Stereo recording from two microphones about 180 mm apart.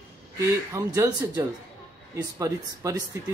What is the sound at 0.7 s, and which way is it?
Speech, 15° right (ahead or behind).